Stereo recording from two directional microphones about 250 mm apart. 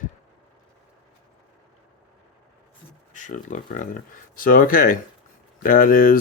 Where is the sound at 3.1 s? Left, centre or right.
Left.